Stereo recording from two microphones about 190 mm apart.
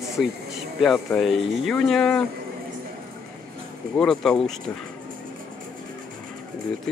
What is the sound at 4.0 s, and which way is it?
Speech, 5° left (ahead or behind).